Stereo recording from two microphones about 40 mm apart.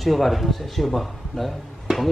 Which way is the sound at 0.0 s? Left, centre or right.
Centre.